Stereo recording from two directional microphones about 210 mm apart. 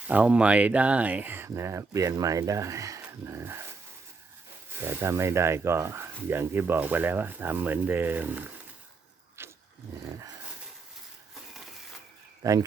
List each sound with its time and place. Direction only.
0.1 s speech: 5° right (ahead or behind)
4.9 s speech: 10° right (ahead or behind)
9.4 s a sound: 10° right (ahead or behind)
12.4 s speech: 15° right (ahead or behind)